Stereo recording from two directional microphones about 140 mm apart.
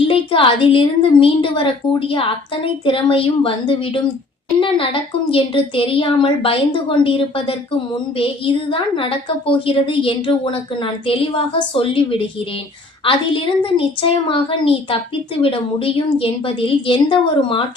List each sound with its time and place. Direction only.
0.0 s a woman's voice: 40° left (ahead or behind)
5.3 s a woman's voice: 40° left (ahead or behind)
13.1 s a woman's voice: 40° left (ahead or behind)